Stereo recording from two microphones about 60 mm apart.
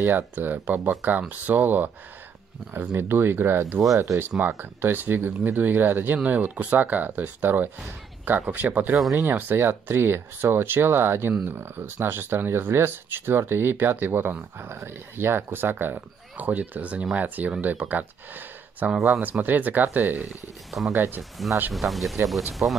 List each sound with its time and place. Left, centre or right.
0.0 s speech: right
6.1 s speech: right
21.2 s speech: centre